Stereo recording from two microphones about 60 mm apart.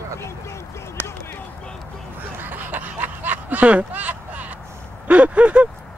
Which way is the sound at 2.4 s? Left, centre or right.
Right.